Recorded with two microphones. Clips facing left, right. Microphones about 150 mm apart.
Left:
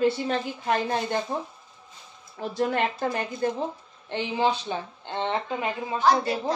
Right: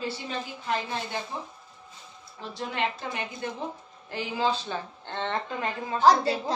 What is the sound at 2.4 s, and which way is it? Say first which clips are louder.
Speech: left 6 dB; 50° left (ahead or behind).